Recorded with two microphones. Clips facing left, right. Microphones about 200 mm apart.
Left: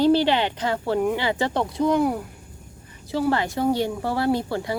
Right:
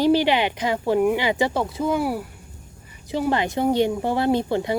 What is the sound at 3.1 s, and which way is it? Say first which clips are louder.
Speech: even; 20° right (ahead or behind).